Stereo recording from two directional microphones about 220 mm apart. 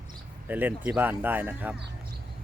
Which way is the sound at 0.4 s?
10° right (ahead or behind).